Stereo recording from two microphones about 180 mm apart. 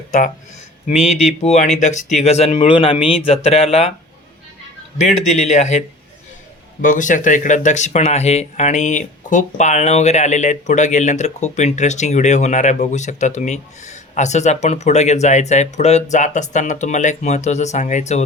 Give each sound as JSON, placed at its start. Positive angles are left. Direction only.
{"t": 0.9, "sound": "speech", "side_deg": -5}
{"t": 1.4, "sound": "speech", "side_deg": 35}
{"t": 4.9, "sound": "speech", "side_deg": 40}
{"t": 6.8, "sound": "speech", "side_deg": 45}